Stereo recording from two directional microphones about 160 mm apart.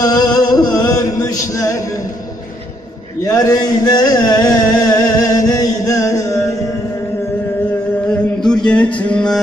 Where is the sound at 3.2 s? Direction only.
20° left (ahead or behind).